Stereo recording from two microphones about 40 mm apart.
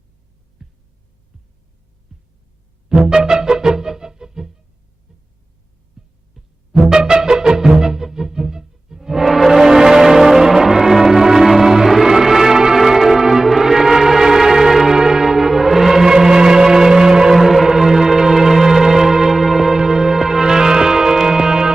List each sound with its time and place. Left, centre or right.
0.6 s a sound: centre
2.1 s hum: centre
2.9 s music: centre
6.0 s heart sounds: centre
6.4 s music: centre